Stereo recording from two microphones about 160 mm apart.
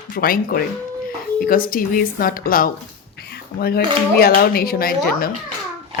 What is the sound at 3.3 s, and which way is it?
Speech, 75° left (ahead or behind).